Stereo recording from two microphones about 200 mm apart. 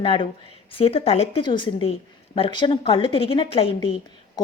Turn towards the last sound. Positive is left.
turn(degrees=30)  # may be behind; listen again after turning